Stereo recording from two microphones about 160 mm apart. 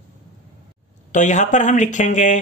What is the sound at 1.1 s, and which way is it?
Speech, 50° left (ahead or behind).